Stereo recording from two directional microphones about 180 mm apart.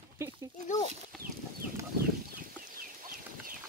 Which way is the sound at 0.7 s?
45° left (ahead or behind).